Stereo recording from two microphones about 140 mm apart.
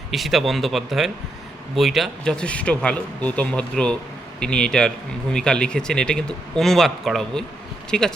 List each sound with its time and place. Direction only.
0.1 s speech: centre (ahead or behind)